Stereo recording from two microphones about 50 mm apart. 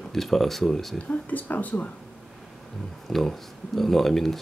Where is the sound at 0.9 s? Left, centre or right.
Left.